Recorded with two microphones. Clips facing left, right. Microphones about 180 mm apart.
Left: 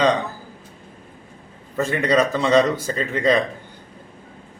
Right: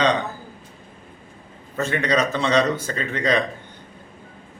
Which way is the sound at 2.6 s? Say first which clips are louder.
Left 2 dB; 35° left (ahead or behind).